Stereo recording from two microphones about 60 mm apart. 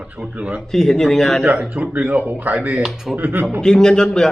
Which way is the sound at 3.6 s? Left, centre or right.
Centre.